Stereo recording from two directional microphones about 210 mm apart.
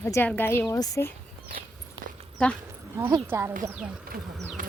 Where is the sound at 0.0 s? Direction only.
10° left (ahead or behind).